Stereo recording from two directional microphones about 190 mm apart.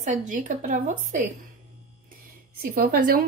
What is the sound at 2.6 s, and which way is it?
Speech, 55° right (ahead or behind).